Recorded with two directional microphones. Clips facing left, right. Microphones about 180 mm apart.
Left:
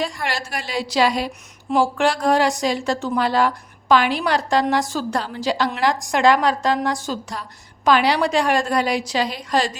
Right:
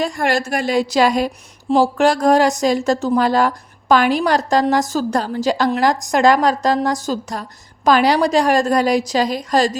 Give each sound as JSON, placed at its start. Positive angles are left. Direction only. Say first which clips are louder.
{"t": 0.0, "sound": "a woman's voice", "louder": "right 7 dB", "side_deg": -45}